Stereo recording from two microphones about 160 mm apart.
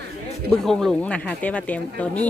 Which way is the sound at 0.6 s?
5° left (ahead or behind).